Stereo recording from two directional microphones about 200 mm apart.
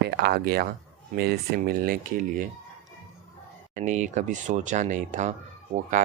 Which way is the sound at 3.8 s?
40° right (ahead or behind).